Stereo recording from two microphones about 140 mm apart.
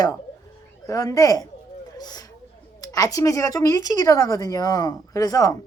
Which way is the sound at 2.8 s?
25° left (ahead or behind).